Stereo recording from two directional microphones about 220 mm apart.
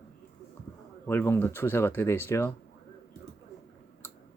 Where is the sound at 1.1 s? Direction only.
10° left (ahead or behind).